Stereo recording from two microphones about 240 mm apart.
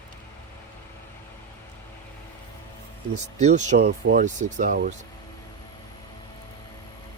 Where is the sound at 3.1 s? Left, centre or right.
Right.